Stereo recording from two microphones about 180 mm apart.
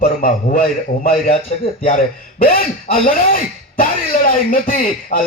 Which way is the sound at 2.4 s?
50° left (ahead or behind).